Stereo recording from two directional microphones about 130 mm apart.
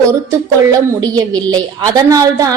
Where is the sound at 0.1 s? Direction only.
25° right (ahead or behind).